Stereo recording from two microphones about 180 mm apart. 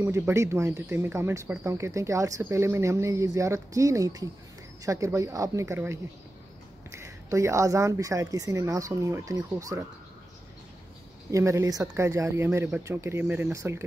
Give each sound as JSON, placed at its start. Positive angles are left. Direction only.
{"t": 0.0, "sound": "speech", "side_deg": -15}
{"t": 11.3, "sound": "speech", "side_deg": -15}